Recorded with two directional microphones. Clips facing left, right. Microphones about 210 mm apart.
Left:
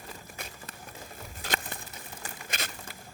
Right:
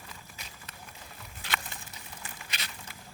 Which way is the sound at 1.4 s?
45° left (ahead or behind).